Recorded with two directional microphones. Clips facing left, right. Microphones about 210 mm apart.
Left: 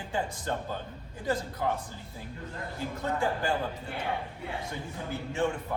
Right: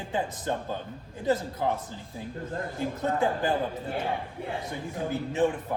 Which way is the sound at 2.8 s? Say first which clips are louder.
Right 4 dB; 20° right (ahead or behind).